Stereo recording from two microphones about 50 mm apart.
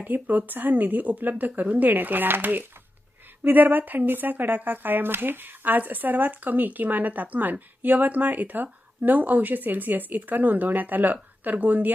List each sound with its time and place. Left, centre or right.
0.0 s speech: right